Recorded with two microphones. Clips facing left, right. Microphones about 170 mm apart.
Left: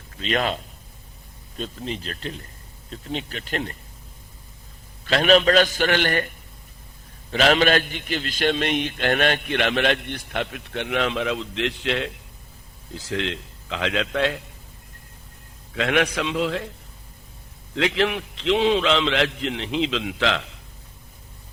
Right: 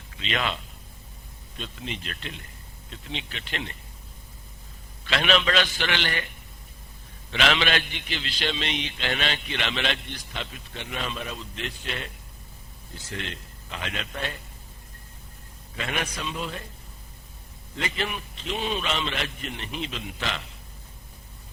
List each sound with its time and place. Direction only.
0.2 s a man's voice: 40° left (ahead or behind)
5.0 s a man's voice: 40° left (ahead or behind); by 14.4 s 90° left
15.7 s a man's voice: 90° left
17.7 s a man's voice: 90° left